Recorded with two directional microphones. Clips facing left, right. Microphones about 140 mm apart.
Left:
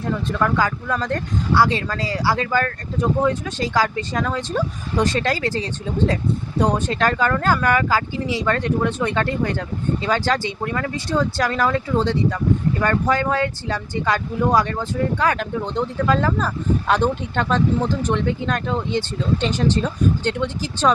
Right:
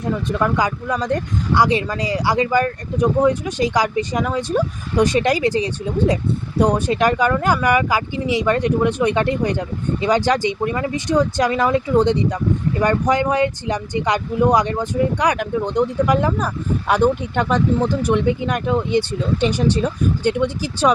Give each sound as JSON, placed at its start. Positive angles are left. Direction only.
{"t": 0.0, "sound": "speech", "side_deg": -15}